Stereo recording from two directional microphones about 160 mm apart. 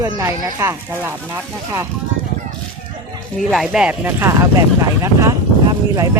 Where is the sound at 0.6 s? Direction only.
20° right (ahead or behind).